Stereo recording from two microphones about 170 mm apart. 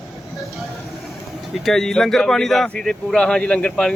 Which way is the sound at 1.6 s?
Centre (ahead or behind).